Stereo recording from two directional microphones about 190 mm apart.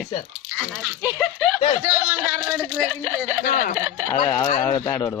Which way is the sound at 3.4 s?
45° left (ahead or behind).